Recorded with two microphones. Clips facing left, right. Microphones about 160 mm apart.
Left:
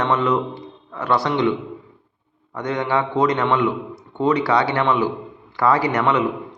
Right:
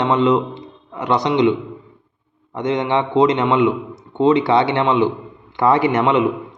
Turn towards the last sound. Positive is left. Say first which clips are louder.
# right 3 dB
turn(degrees=-25)  # may be behind; listen again after turning